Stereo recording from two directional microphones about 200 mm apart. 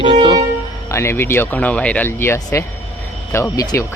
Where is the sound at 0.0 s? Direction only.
25° right (ahead or behind).